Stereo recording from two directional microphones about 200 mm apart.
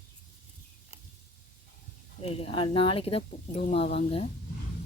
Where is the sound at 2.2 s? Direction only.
30° left (ahead or behind).